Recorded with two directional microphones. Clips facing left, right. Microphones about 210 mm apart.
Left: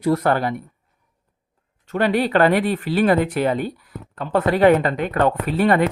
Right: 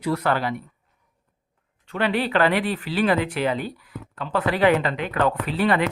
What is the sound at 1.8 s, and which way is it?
Speech, 45° left (ahead or behind).